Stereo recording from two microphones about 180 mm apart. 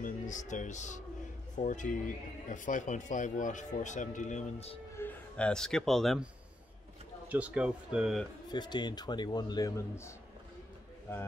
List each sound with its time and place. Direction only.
0.0 s speech: 45° left (ahead or behind)
4.9 s speech: 10° left (ahead or behind)
7.2 s speech: 10° right (ahead or behind)
8.5 s a man's voice: 25° left (ahead or behind)